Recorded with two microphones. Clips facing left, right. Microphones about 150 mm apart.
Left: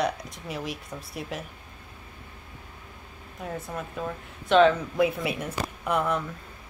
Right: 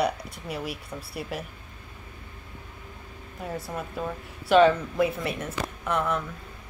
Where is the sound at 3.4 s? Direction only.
Centre (ahead or behind).